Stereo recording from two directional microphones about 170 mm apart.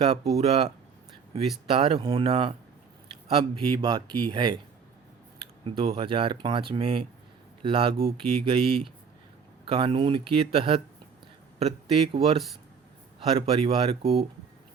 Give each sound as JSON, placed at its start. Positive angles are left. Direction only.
{"t": 0.0, "sound": "speech", "side_deg": -35}
{"t": 1.7, "sound": "speech", "side_deg": -35}
{"t": 5.6, "sound": "speech", "side_deg": -35}
{"t": 12.1, "sound": "speech", "side_deg": -35}